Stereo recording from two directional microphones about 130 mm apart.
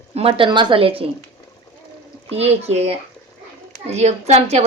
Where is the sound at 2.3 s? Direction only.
55° right (ahead or behind).